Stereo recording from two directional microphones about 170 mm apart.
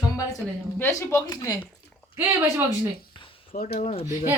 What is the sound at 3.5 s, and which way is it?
Speech, 55° left (ahead or behind).